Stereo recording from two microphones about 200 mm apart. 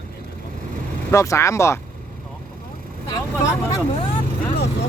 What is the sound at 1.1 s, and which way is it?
Speech, 15° left (ahead or behind).